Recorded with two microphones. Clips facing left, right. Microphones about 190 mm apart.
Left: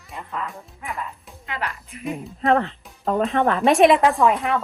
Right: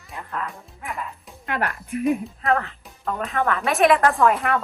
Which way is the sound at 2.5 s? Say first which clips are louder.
Left 3 dB; 30° left (ahead or behind).